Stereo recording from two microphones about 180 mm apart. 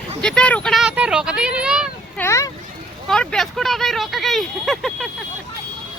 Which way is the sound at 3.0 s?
Centre (ahead or behind).